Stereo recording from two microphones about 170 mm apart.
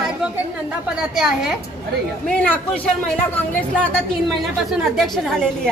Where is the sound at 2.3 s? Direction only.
5° left (ahead or behind).